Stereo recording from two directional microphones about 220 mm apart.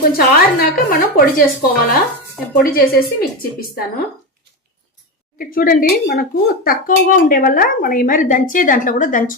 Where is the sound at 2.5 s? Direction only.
40° left (ahead or behind).